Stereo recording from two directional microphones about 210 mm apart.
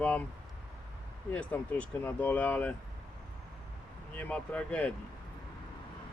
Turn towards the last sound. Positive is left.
turn(degrees=5)  # may be behind; listen again after turning